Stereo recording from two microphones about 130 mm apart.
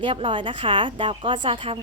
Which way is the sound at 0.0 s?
40° right (ahead or behind).